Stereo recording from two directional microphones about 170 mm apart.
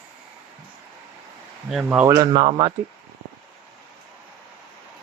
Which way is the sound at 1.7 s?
5° right (ahead or behind).